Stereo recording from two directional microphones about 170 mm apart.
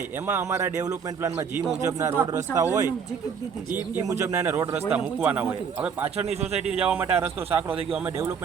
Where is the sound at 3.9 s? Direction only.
15° right (ahead or behind).